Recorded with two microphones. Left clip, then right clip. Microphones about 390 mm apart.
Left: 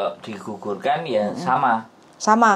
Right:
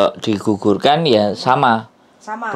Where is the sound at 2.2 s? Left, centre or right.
Left.